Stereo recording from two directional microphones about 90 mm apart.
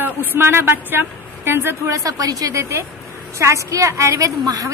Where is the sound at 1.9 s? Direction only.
40° right (ahead or behind).